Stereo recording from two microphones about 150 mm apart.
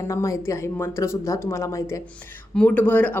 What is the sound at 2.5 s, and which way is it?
Speech, 10° left (ahead or behind).